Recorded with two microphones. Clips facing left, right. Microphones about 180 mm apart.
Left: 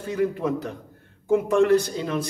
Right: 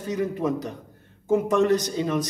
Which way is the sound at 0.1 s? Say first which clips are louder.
Left 1 dB; 20° right (ahead or behind).